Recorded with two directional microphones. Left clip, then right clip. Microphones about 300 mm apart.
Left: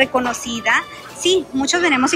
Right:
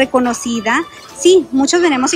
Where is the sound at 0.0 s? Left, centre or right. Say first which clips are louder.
Right 3 dB; centre.